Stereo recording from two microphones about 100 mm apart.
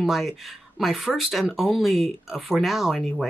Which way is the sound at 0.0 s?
Centre (ahead or behind).